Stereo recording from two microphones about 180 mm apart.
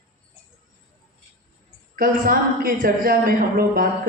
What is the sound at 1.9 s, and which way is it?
A woman's voice, 50° right (ahead or behind).